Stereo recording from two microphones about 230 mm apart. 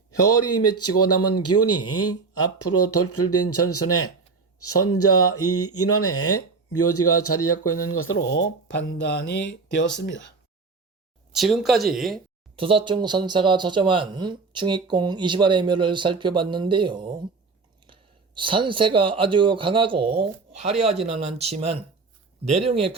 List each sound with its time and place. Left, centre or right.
0.2 s speech: left
11.3 s speech: centre
12.5 s speech: right